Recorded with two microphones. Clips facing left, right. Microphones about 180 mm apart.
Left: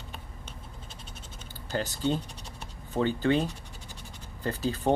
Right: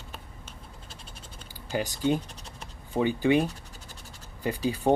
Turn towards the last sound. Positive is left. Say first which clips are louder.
# right 2 dB
turn(degrees=-10)  # may be behind; listen again after turning